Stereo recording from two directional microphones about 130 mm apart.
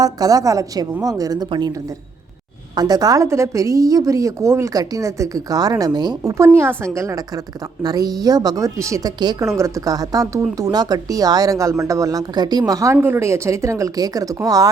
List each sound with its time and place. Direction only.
0.0 s a woman's voice: 25° right (ahead or behind)
2.7 s a woman's voice: 30° right (ahead or behind)